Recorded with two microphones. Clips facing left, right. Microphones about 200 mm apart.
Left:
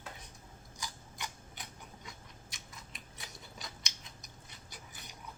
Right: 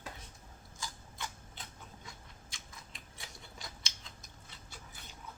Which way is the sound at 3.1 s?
20° left (ahead or behind).